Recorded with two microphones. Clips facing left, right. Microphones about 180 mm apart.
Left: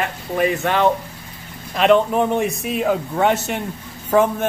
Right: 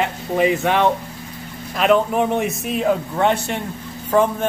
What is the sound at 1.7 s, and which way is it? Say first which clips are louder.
Speech: left 1 dB; centre (ahead or behind).